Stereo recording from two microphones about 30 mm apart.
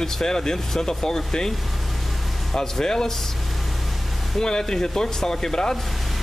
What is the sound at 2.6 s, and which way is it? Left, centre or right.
Speech, left.